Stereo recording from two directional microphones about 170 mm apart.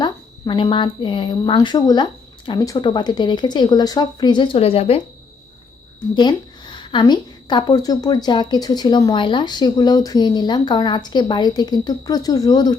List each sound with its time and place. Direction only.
0.0 s a woman's voice: 30° left (ahead or behind)
6.1 s a woman's voice: 25° left (ahead or behind)